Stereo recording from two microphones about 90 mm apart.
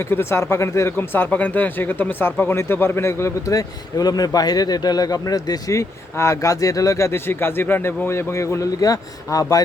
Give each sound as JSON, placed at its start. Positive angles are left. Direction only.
{"t": 0.0, "sound": "speech", "side_deg": 25}